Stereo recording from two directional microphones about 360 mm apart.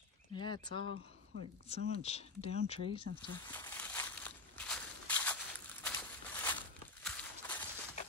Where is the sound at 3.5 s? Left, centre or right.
Centre.